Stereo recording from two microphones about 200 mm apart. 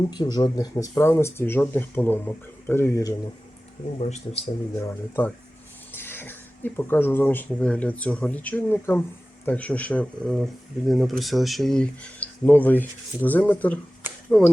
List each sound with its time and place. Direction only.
0.1 s speech: 20° left (ahead or behind)
3.9 s speech: 35° left (ahead or behind)
4.8 s speech: 10° left (ahead or behind)